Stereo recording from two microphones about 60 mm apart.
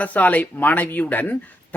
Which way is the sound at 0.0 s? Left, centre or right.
Left.